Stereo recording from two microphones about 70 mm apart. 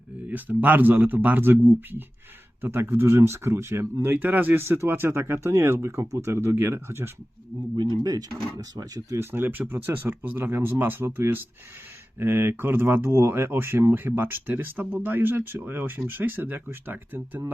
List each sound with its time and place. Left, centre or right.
0.3 s speech: right
7.8 s speech: right
8.5 s speech: right
9.1 s speech: right